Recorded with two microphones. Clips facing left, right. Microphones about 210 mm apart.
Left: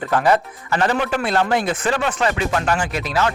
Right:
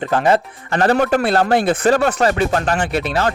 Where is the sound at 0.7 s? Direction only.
50° right (ahead or behind).